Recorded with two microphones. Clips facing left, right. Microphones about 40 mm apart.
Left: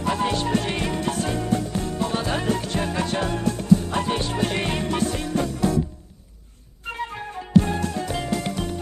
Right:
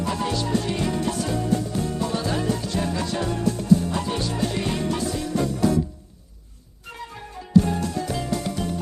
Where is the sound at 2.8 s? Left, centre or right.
Left.